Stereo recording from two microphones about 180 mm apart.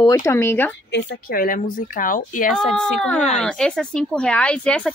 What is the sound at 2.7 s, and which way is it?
Speech, centre (ahead or behind).